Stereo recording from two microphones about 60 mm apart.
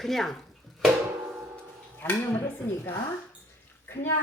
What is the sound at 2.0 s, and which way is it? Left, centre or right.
A child's voice, left.